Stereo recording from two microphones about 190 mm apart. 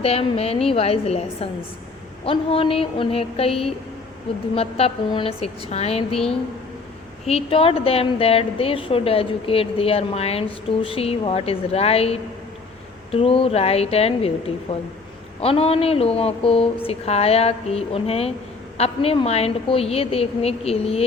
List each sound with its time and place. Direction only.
0.0 s a woman's voice: 30° left (ahead or behind)
2.2 s a sound: 30° left (ahead or behind)
4.5 s a woman's voice: 30° left (ahead or behind)
7.3 s a woman's voice: 30° left (ahead or behind)